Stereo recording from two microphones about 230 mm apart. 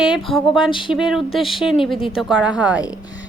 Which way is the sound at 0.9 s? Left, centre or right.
Centre.